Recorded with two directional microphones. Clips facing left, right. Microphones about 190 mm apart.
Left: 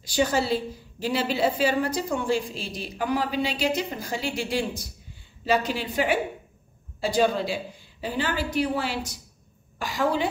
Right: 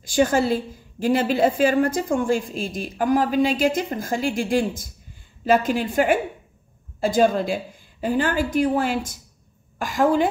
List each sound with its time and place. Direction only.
0.0 s a woman's voice: 50° right (ahead or behind)